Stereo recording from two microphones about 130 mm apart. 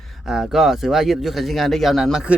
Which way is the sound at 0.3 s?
5° right (ahead or behind).